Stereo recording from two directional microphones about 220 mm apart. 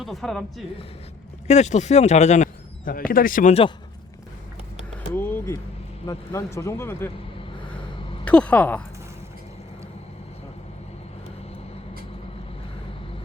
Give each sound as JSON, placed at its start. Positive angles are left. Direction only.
{"t": 0.0, "sound": "speech", "side_deg": 0}
{"t": 1.5, "sound": "speech", "side_deg": 30}
{"t": 5.1, "sound": "a sound", "side_deg": 10}
{"t": 6.1, "sound": "speech", "side_deg": 15}
{"t": 8.2, "sound": "speech", "side_deg": 5}